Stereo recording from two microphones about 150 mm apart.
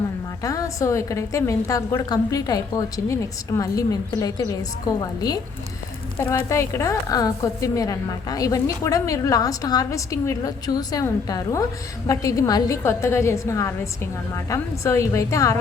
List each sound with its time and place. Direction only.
0.4 s a woman's voice: 25° left (ahead or behind)